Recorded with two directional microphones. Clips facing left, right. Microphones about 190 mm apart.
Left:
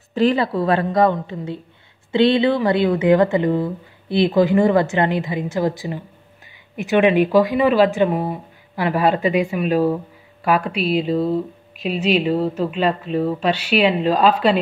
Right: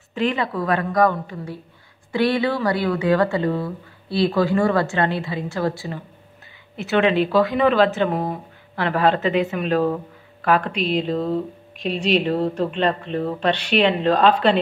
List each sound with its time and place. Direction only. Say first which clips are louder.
0.1 s a woman's voice: left 5 dB; 35° left (ahead or behind); by 14.6 s 10° left (ahead or behind)